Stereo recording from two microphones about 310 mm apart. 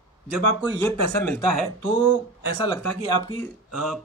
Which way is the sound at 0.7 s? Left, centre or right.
Centre.